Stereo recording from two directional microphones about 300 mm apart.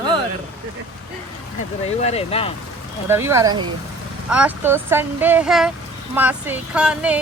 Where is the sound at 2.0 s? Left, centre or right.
Left.